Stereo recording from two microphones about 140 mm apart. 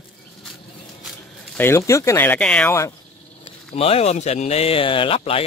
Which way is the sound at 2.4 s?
5° left (ahead or behind).